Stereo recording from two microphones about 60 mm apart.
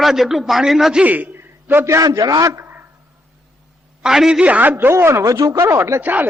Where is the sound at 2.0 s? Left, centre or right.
Right.